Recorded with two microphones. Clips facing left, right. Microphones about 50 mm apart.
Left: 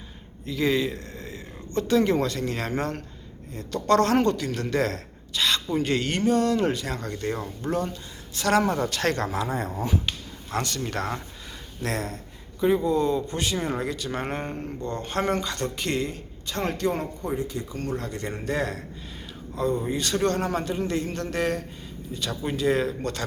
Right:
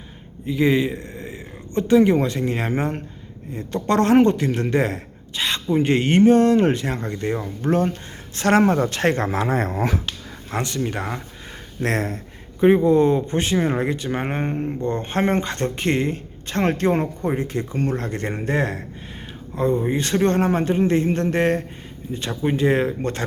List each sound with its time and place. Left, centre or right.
0.4 s a man's voice: right
7.6 s speech: right
10.5 s speech: right
11.8 s speech: right